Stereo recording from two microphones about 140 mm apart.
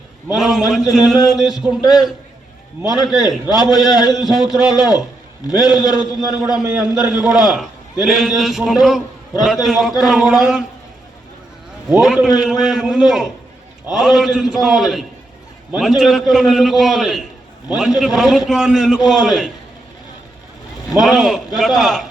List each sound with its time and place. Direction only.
0.3 s a man's voice: centre (ahead or behind)
3.0 s a man's voice: 5° right (ahead or behind)
3.5 s a man's voice: 30° left (ahead or behind)
4.4 s a man's voice: 5° right (ahead or behind)
11.9 s a man's voice: 5° right (ahead or behind)
20.9 s a man's voice: centre (ahead or behind)